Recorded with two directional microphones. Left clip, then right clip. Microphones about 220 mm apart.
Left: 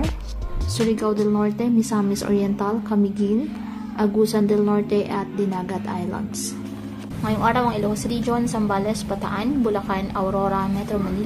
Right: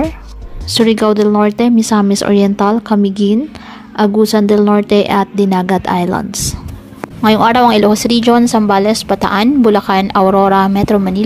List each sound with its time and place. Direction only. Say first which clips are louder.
0.9 s speech: right 11 dB; 35° right (ahead or behind)
7.2 s speech: right 12 dB; 40° right (ahead or behind)